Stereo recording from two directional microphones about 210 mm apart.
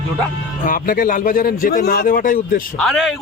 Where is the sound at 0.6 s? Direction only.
40° left (ahead or behind).